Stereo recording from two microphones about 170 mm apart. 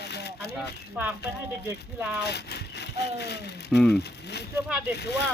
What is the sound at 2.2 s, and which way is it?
Speech, 75° left (ahead or behind).